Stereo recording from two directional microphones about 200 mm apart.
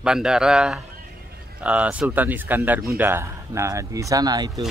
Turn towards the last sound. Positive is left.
turn(degrees=-20)  # may be behind; listen again after turning